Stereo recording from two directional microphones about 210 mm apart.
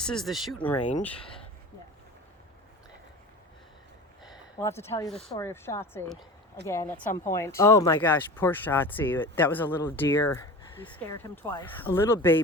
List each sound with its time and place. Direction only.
0.0 s speech: centre (ahead or behind)
4.6 s speech: 10° left (ahead or behind)